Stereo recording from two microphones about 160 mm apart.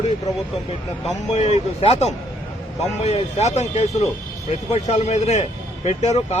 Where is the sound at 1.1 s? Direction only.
45° left (ahead or behind).